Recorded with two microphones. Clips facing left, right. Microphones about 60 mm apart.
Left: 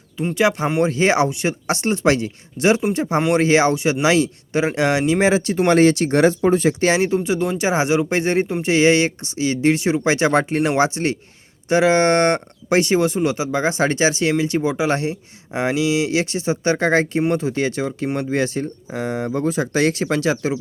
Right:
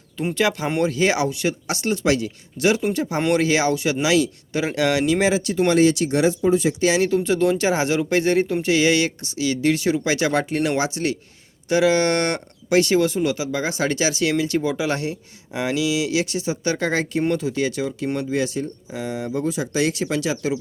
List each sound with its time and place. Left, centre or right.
0.3 s speech: left
7.3 s speech: centre; by 20.5 s left